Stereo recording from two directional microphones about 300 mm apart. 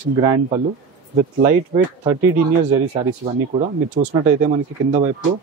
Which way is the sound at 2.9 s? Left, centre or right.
Right.